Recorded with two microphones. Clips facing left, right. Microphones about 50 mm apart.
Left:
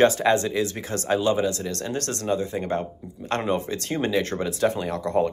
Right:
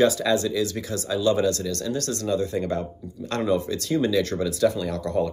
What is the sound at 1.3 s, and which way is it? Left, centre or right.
Speech, left.